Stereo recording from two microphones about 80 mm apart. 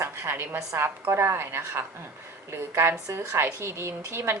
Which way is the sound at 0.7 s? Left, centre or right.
Right.